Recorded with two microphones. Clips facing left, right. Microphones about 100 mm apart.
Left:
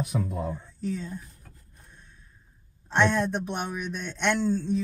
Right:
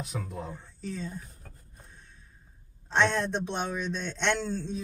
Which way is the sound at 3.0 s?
10° left (ahead or behind).